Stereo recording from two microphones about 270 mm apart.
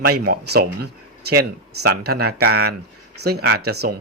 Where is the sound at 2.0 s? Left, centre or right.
Right.